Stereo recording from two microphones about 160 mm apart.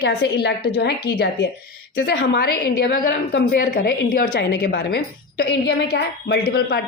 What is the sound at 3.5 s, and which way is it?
A woman's voice, 65° left (ahead or behind).